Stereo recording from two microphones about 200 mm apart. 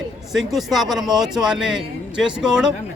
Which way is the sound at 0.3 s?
Centre (ahead or behind).